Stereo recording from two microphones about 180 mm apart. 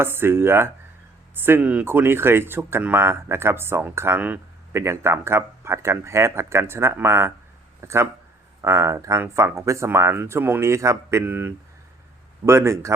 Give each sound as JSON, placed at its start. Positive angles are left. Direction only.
{"t": 0.0, "sound": "speech", "side_deg": -10}